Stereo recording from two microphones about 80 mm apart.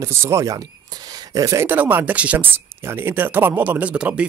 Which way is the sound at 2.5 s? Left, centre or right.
Right.